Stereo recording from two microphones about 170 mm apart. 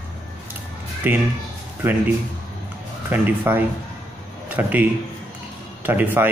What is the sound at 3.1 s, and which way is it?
A man's voice, 10° right (ahead or behind).